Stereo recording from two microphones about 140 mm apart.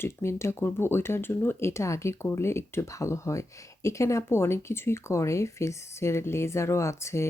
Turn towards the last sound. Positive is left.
turn(degrees=20)  # may be behind; listen again after turning